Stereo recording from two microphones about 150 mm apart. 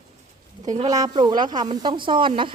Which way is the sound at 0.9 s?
25° right (ahead or behind).